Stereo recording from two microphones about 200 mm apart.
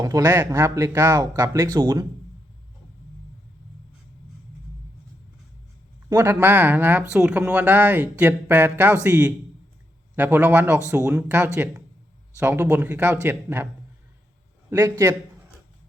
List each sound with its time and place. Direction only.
0.0 s speech: 15° right (ahead or behind)
6.1 s speech: 15° right (ahead or behind)
14.7 s speech: 15° right (ahead or behind)